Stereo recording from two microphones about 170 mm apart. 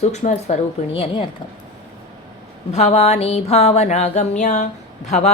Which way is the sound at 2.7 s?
40° left (ahead or behind).